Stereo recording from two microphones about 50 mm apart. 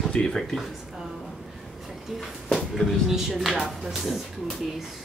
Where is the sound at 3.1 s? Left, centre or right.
Centre.